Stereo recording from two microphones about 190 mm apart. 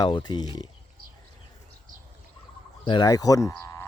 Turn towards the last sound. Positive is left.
turn(degrees=15)  # may be behind; listen again after turning